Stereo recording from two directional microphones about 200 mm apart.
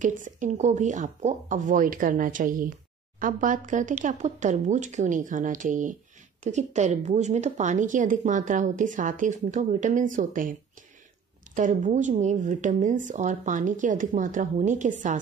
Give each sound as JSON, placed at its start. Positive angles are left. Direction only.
{"t": 0.0, "sound": "a woman's voice", "side_deg": -40}
{"t": 11.5, "sound": "a woman's voice", "side_deg": -40}